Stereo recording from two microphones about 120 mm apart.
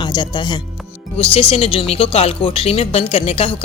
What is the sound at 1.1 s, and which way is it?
Speech, 55° left (ahead or behind).